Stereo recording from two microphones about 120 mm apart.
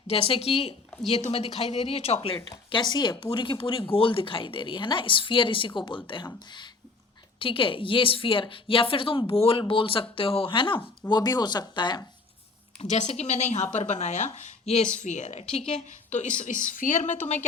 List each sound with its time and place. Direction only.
0.1 s speech: 55° left (ahead or behind)
11.1 s speech: 35° left (ahead or behind)
12.8 s a woman's voice: 70° left (ahead or behind)
14.9 s a woman's voice: 80° left
15.4 s a woman's voice: 55° left (ahead or behind); by 17.4 s 85° left